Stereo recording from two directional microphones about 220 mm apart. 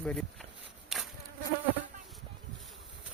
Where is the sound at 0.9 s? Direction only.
Centre (ahead or behind).